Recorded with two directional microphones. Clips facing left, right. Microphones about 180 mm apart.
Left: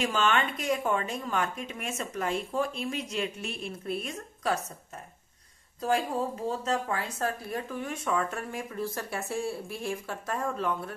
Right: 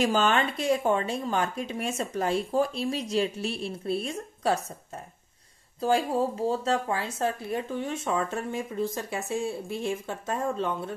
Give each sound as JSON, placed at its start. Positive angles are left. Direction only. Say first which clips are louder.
{"t": 0.0, "sound": "speech", "louder": "right 3 dB", "side_deg": -35}
{"t": 5.8, "sound": "speech", "louder": "right 4 dB", "side_deg": -30}